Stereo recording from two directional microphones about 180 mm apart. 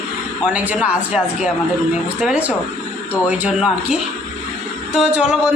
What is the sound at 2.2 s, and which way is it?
A woman's voice, 5° right (ahead or behind).